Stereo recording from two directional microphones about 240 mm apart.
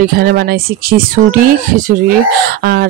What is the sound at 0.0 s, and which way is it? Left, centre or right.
Speech, right.